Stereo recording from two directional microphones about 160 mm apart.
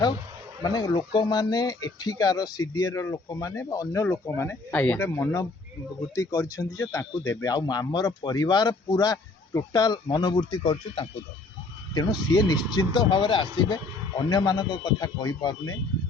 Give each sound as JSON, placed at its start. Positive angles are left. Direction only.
{"t": 0.6, "sound": "speech", "side_deg": 25}